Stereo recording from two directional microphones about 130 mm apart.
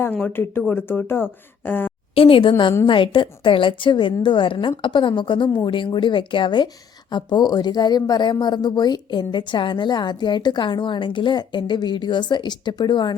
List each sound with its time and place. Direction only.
0.1 s speech: 10° left (ahead or behind)
2.1 s a woman's voice: 45° left (ahead or behind)